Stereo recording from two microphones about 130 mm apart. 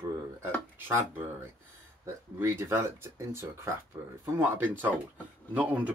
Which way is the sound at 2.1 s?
20° right (ahead or behind).